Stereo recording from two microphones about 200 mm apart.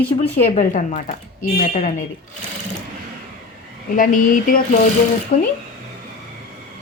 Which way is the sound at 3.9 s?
45° left (ahead or behind).